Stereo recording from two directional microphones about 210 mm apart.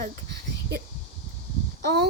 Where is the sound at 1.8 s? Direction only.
50° right (ahead or behind).